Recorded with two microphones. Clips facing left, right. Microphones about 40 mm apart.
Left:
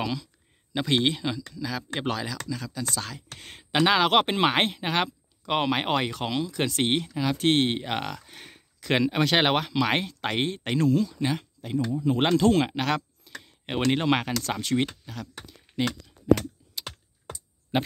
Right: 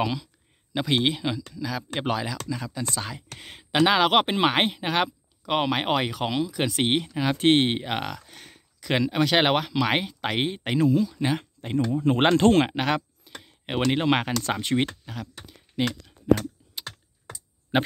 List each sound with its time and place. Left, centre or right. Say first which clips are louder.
0.0 s speech: right 3 dB; centre
7.8 s speech: right 1 dB; centre
8.3 s speech: left 1 dB; centre
11.7 s speech: right 3 dB; right
12.2 s speech: right 3 dB; right
12.6 s speech: right 2 dB; centre
14.5 s speech: right 1 dB; right
15.0 s speech: right 1 dB; centre
16.3 s typing: even; right